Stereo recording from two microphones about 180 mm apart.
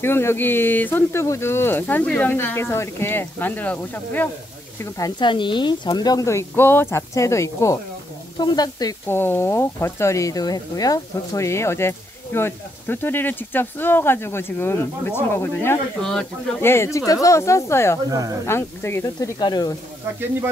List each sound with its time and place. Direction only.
0.0 s speech: 15° left (ahead or behind)
4.9 s speech: 25° left (ahead or behind)
18.1 s speech: 20° right (ahead or behind)
18.5 s speech: 15° left (ahead or behind)